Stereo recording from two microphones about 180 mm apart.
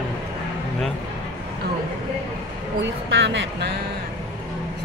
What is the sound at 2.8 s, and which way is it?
Speech, 90° right.